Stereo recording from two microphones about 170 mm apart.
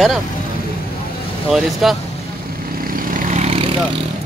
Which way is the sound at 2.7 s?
55° right (ahead or behind).